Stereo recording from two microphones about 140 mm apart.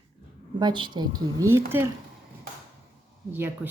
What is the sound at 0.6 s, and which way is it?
A woman's voice, 35° right (ahead or behind).